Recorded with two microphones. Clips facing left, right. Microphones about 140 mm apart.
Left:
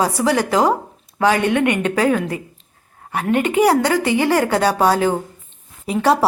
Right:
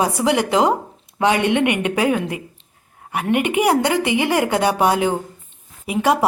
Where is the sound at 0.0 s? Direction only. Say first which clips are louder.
Left 1 dB; 20° right (ahead or behind).